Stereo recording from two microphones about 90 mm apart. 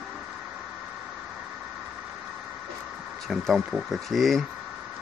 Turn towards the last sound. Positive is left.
turn(degrees=0)  # may be behind; listen again after turning